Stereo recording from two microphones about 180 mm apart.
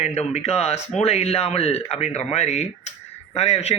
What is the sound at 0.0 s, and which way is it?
Speech, 35° left (ahead or behind).